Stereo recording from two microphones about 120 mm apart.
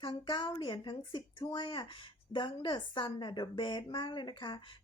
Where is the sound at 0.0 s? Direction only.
40° left (ahead or behind).